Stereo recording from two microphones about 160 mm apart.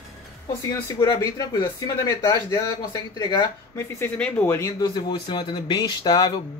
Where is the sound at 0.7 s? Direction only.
20° left (ahead or behind).